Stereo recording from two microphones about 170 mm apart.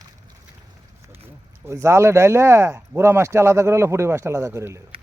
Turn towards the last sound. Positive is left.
turn(degrees=-15)  # may be behind; listen again after turning